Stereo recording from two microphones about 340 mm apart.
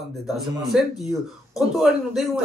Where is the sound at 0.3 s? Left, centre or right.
Centre.